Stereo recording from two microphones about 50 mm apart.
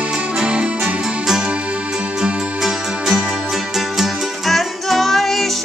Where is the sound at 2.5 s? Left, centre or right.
Centre.